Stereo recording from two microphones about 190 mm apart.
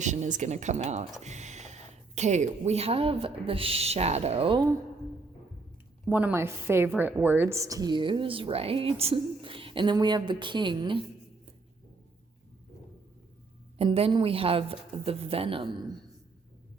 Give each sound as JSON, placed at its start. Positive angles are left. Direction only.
{"t": 0.0, "sound": "speech", "side_deg": -40}
{"t": 6.1, "sound": "a woman's voice", "side_deg": -10}
{"t": 13.7, "sound": "a woman's voice", "side_deg": -30}